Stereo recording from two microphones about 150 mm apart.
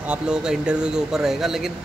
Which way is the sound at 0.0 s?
5° right (ahead or behind).